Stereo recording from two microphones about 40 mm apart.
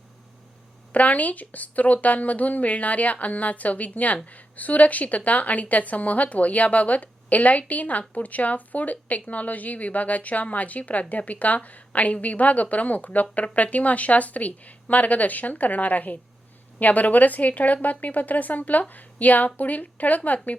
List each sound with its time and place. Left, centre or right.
0.9 s a woman's voice: left